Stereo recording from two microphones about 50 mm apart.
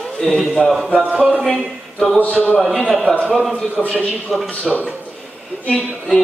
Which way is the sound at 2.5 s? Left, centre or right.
Centre.